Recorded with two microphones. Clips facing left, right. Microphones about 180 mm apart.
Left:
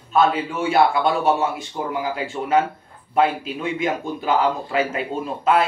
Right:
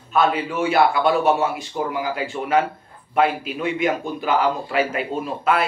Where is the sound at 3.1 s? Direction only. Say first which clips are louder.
Even; 30° left (ahead or behind).